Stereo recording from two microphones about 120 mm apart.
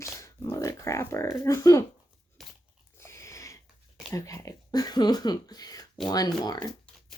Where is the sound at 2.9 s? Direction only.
25° left (ahead or behind).